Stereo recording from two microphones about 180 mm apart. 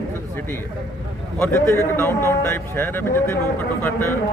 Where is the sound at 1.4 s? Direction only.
15° left (ahead or behind).